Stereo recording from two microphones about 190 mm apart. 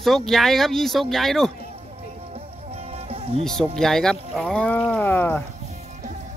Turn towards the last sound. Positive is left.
turn(degrees=10)  # may be behind; listen again after turning